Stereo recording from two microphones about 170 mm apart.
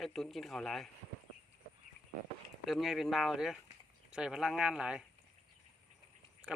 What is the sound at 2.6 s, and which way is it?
Speech, centre (ahead or behind).